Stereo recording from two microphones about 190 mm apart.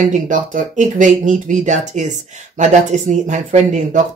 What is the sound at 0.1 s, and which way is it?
Speech, 45° right (ahead or behind).